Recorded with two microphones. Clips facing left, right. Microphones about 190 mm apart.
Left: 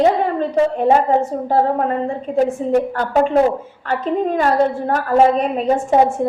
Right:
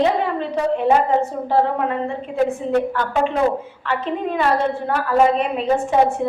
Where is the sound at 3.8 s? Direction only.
40° left (ahead or behind).